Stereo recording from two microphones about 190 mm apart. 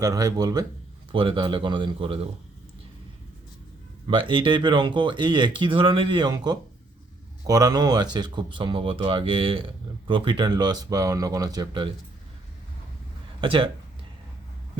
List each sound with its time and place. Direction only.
0.0 s speech: 20° right (ahead or behind)
4.0 s speech: 25° right (ahead or behind)
13.4 s speech: 25° right (ahead or behind)